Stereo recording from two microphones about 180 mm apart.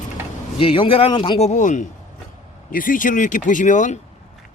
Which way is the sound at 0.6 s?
30° left (ahead or behind).